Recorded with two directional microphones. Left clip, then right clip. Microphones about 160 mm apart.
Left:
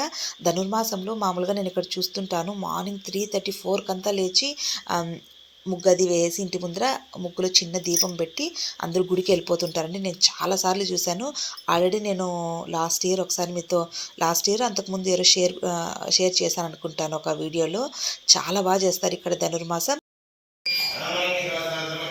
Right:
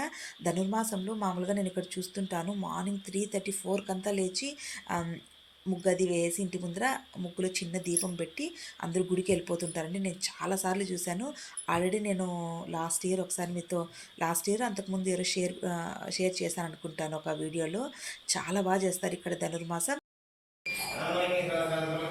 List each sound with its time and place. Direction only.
0.0 s speech: 20° left (ahead or behind)
12.3 s speech: 35° left (ahead or behind)
12.5 s speech: 20° left (ahead or behind)